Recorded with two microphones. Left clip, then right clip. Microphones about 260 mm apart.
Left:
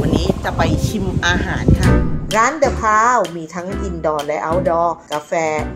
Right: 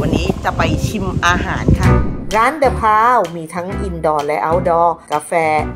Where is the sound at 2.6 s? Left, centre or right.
Right.